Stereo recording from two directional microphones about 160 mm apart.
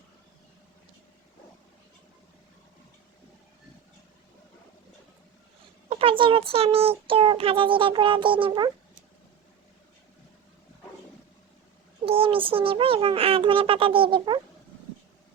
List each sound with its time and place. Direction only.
5.9 s a child's voice: 35° right (ahead or behind)
12.0 s a child's voice: 35° right (ahead or behind)